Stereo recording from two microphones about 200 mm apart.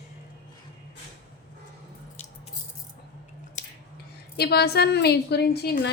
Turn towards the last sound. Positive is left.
turn(degrees=55)  # may be behind; listen again after turning